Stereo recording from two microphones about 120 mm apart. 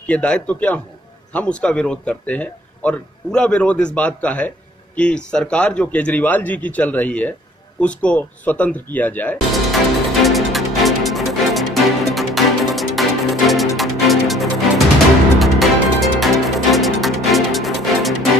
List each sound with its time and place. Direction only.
0.0 s speech: 10° left (ahead or behind)
10.2 s music: centre (ahead or behind)